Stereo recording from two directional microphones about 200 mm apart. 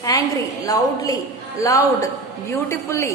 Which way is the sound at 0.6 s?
15° left (ahead or behind).